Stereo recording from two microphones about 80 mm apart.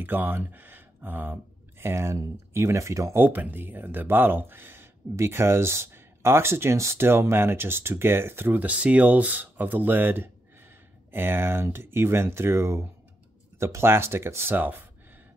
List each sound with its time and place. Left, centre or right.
0.0 s speech: right
3.2 s speech: right